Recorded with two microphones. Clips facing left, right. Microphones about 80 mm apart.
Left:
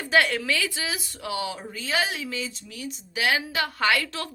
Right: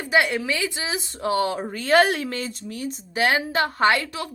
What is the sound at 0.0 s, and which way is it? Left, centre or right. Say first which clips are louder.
Speech: right 1 dB; centre.